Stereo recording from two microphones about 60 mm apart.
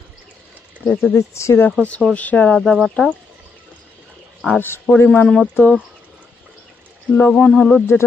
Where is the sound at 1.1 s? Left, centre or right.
Left.